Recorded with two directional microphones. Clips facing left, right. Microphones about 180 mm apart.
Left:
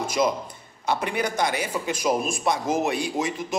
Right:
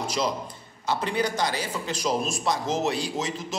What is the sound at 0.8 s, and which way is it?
A man's voice, 15° left (ahead or behind).